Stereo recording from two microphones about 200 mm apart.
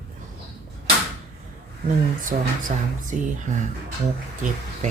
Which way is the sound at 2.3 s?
40° right (ahead or behind).